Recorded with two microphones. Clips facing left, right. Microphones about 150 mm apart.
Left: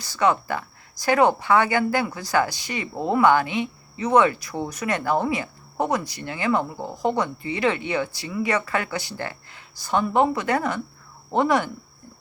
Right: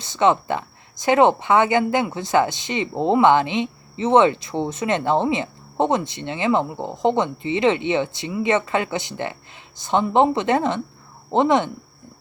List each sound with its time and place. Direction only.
0.0 s speech: 25° right (ahead or behind)